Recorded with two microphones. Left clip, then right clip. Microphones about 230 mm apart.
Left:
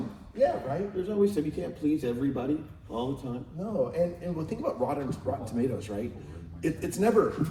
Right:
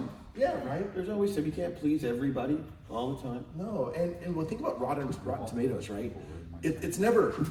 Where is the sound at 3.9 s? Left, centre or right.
Left.